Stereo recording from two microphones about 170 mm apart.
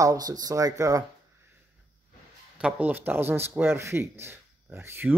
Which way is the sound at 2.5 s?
5° right (ahead or behind).